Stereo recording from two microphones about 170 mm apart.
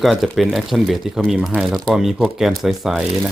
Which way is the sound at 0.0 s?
Centre (ahead or behind).